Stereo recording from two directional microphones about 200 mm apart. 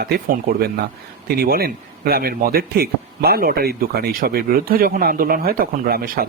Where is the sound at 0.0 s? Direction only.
50° right (ahead or behind).